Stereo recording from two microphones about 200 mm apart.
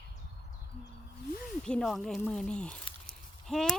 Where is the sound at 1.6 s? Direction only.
5° left (ahead or behind).